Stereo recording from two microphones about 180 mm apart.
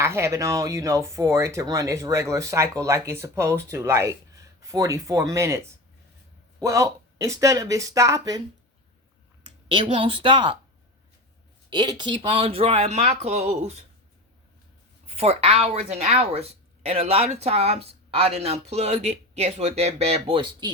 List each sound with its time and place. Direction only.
0.0 s speech: 15° right (ahead or behind)
9.4 s speech: 30° right (ahead or behind)
11.7 s speech: 25° right (ahead or behind)
15.0 s speech: 35° right (ahead or behind)